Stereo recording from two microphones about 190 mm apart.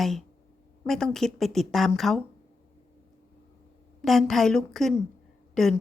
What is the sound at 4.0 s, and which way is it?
Speech, centre (ahead or behind).